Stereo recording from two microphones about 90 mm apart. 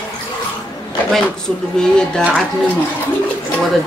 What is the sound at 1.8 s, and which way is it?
Speech, 5° left (ahead or behind).